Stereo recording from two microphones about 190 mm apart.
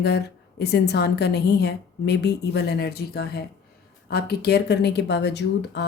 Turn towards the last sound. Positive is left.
turn(degrees=65)  # may be behind; listen again after turning